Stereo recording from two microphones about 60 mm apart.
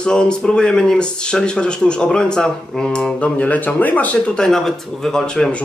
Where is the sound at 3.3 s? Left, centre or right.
Left.